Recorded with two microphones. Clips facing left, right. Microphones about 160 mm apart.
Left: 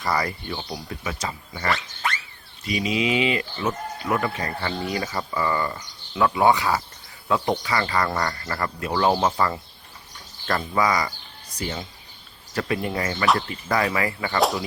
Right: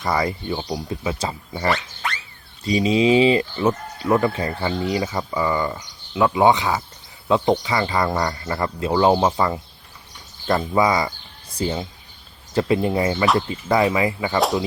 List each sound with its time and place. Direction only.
0.0 s speech: 20° right (ahead or behind)